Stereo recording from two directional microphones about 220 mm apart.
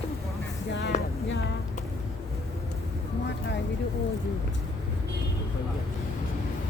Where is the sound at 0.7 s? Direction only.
50° left (ahead or behind).